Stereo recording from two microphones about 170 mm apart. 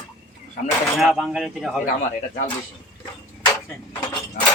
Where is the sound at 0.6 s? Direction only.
60° left (ahead or behind).